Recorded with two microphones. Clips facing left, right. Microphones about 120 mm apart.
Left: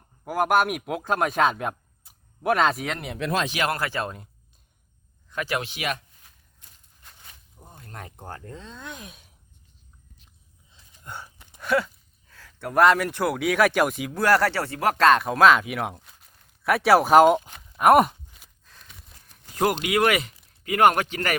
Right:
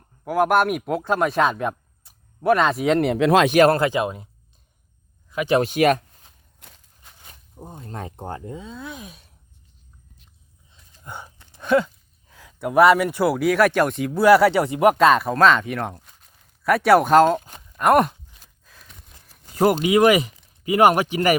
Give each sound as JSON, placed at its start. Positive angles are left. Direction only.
{"t": 0.3, "sound": "speech", "side_deg": 0}
{"t": 3.0, "sound": "speech", "side_deg": -90}
{"t": 3.5, "sound": "speech", "side_deg": -45}
{"t": 3.8, "sound": "speech", "side_deg": -15}
{"t": 5.5, "sound": "speech", "side_deg": -45}
{"t": 6.6, "sound": "a sound", "side_deg": -80}
{"t": 7.5, "sound": "speech", "side_deg": -30}
{"t": 11.0, "sound": "a sound", "side_deg": -15}
{"t": 12.3, "sound": "speech", "side_deg": -15}
{"t": 14.5, "sound": "speech", "side_deg": -20}
{"t": 14.9, "sound": "speech", "side_deg": -5}
{"t": 18.6, "sound": "a sound", "side_deg": 0}
{"t": 19.5, "sound": "speech", "side_deg": -5}